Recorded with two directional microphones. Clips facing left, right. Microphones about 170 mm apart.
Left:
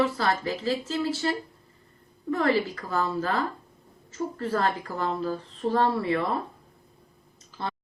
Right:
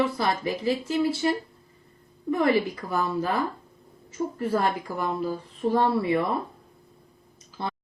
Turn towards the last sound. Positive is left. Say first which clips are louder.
# right 1 dB
turn(degrees=-15)  # may be behind; listen again after turning